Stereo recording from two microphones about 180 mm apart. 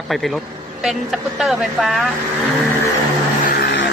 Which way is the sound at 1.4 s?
Centre (ahead or behind).